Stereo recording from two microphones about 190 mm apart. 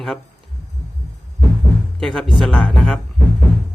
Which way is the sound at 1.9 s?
Centre (ahead or behind).